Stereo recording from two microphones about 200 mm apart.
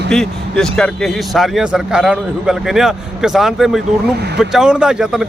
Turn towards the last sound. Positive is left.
turn(degrees=-5)  # may be behind; listen again after turning